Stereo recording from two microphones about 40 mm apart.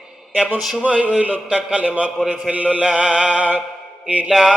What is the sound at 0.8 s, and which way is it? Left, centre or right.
Mantra, right.